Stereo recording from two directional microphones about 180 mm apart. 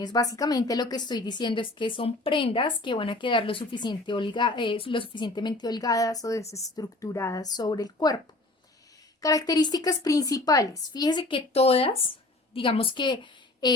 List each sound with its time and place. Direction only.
0.0 s a woman's voice: 20° left (ahead or behind)
9.2 s a woman's voice: 20° left (ahead or behind)